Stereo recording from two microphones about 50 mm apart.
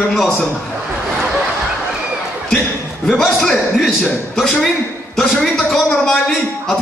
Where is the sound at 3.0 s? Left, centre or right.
Centre.